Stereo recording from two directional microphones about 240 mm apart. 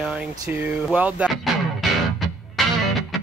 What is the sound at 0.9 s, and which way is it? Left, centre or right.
Music, centre.